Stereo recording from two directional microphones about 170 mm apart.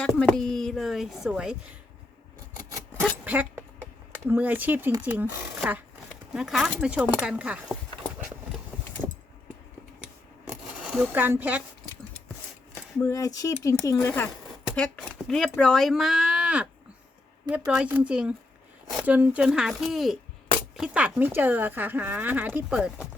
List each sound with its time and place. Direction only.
0.0 s speech: 5° left (ahead or behind)
3.2 s speech: 10° right (ahead or behind)
10.5 s a sound: 5° right (ahead or behind)
13.0 s speech: 20° left (ahead or behind)
15.3 s speech: 5° left (ahead or behind)
17.8 s speech: 10° right (ahead or behind)